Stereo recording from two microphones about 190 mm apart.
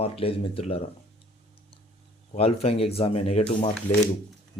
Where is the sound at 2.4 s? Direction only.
30° left (ahead or behind).